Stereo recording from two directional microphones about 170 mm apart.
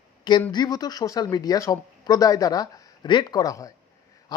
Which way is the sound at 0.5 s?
25° left (ahead or behind).